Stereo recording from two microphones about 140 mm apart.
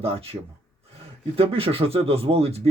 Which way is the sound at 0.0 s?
45° right (ahead or behind).